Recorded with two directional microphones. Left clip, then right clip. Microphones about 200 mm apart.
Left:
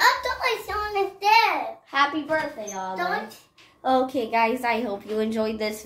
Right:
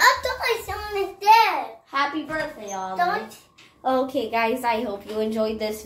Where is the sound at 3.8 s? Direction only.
20° left (ahead or behind).